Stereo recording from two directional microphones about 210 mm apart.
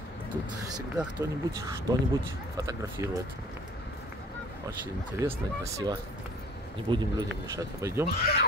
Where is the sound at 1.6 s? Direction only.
15° right (ahead or behind).